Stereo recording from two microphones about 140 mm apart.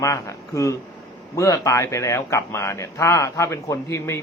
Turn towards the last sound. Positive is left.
turn(degrees=20)  # may be behind; listen again after turning